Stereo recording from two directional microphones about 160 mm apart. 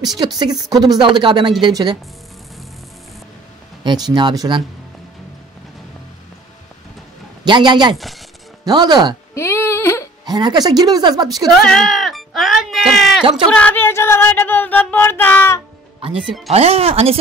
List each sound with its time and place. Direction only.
0.2 s speech: 30° right (ahead or behind)
3.8 s speech: 25° right (ahead or behind)
7.4 s speech: 30° right (ahead or behind)
7.9 s speech: centre (ahead or behind)
8.6 s speech: 25° right (ahead or behind)
9.3 s a sound: 15° left (ahead or behind)
10.2 s speech: 25° right (ahead or behind)
11.4 s speech: centre (ahead or behind)
13.5 s a sound: 10° left (ahead or behind)
16.2 s speech: 5° right (ahead or behind)
16.4 s speech: 40° right (ahead or behind)